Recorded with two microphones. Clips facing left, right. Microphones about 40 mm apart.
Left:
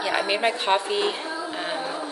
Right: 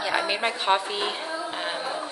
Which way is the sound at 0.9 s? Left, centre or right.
Centre.